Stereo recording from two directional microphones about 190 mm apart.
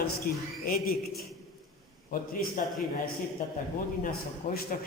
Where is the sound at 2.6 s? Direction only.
45° left (ahead or behind).